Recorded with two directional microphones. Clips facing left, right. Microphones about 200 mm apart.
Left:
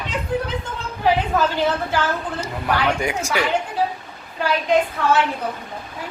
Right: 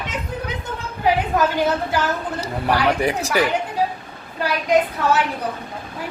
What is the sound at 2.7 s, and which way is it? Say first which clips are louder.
Speech: right 2 dB; 35° right (ahead or behind).